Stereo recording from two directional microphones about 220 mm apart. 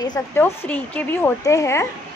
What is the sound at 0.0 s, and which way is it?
Speech, 20° left (ahead or behind).